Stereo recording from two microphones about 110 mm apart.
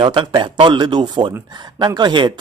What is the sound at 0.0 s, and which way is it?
Speech, 45° right (ahead or behind).